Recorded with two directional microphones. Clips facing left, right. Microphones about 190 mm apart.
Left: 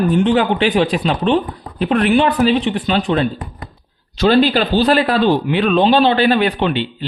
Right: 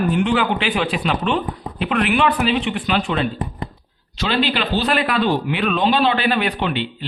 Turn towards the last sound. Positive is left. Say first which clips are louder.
# left 5 dB
turn(degrees=30)  # may be behind; listen again after turning